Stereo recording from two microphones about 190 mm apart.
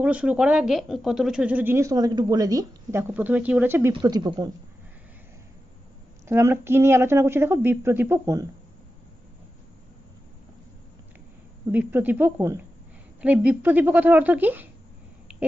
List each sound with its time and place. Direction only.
0.0 s speech: 5° right (ahead or behind)
6.2 s speech: 15° right (ahead or behind)
11.7 s speech: 10° right (ahead or behind)